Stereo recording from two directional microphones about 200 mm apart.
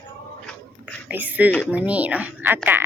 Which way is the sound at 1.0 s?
10° right (ahead or behind).